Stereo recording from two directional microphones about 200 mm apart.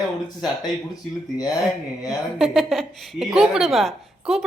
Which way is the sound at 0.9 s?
20° left (ahead or behind).